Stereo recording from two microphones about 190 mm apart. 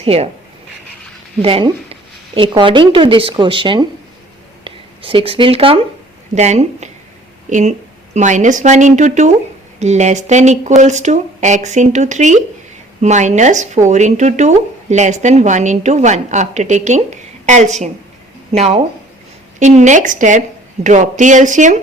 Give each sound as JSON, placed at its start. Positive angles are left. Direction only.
{"t": 0.0, "sound": "speech", "side_deg": -30}
{"t": 1.4, "sound": "speech", "side_deg": -30}
{"t": 8.1, "sound": "speech", "side_deg": -40}